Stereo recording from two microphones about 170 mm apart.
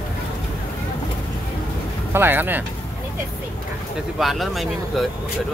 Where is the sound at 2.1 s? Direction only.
10° right (ahead or behind).